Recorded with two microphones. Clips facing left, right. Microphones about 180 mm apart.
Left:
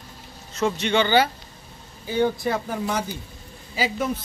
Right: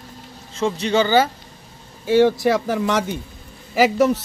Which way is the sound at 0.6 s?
30° right (ahead or behind).